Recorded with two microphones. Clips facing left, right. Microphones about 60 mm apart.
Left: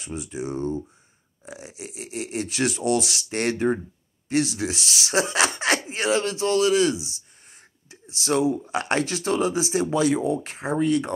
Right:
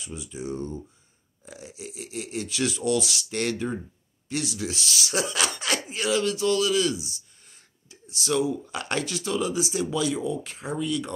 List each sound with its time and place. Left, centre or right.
0.0 s speech: left